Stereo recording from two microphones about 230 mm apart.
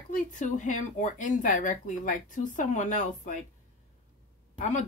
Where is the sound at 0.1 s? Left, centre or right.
Left.